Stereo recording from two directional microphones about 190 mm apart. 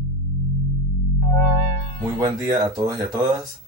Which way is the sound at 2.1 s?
20° right (ahead or behind).